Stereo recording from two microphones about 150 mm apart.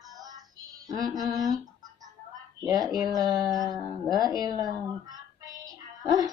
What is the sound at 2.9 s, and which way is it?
Music, 25° right (ahead or behind).